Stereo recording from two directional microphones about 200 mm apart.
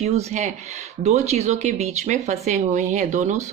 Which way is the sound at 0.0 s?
30° right (ahead or behind).